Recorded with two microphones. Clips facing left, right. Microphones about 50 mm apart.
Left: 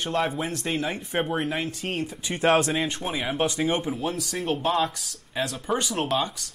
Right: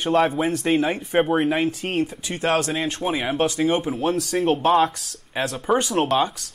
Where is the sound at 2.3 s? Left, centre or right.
Centre.